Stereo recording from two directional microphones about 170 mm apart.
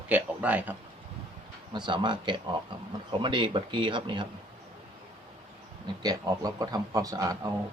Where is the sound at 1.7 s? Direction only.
25° right (ahead or behind).